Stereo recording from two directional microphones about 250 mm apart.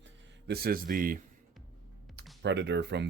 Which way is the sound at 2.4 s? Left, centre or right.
Right.